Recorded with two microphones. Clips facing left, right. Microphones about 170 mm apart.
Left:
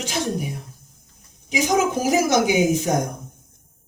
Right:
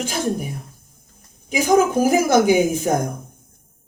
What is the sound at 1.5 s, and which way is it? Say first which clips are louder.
A woman's voice: right 4 dB; 55° right (ahead or behind).